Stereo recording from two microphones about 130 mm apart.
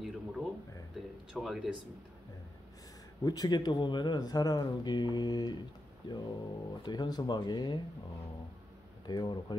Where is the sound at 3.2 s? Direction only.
30° left (ahead or behind).